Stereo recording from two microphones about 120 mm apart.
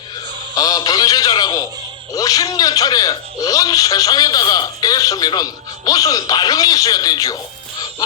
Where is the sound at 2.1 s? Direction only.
30° left (ahead or behind).